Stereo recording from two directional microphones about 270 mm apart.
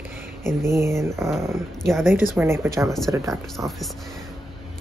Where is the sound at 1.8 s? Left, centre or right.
Centre.